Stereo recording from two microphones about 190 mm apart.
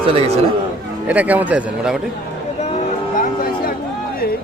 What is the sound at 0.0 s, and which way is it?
Speech, 30° right (ahead or behind).